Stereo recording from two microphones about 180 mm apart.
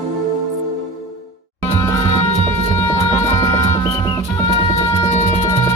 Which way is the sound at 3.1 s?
40° left (ahead or behind).